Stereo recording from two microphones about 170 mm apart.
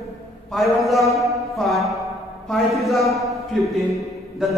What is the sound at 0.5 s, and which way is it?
A man's voice, centre (ahead or behind).